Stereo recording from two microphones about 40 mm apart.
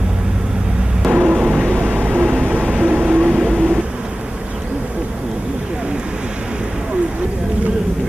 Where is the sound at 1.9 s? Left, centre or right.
Right.